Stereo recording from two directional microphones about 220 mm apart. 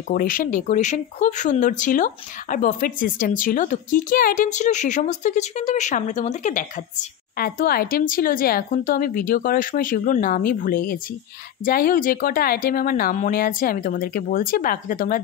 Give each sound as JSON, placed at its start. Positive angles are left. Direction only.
{"t": 0.1, "sound": "speech", "side_deg": 40}